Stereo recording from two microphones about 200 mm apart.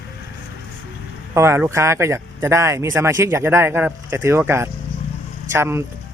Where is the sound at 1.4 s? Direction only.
10° right (ahead or behind).